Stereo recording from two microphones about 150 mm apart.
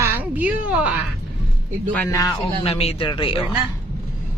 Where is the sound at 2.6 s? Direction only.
40° left (ahead or behind).